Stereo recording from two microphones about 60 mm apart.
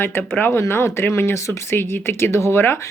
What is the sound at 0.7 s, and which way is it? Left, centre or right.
Speech, left.